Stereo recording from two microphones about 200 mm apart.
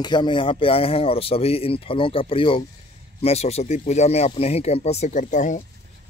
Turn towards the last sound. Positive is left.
turn(degrees=40)  # may be behind; listen again after turning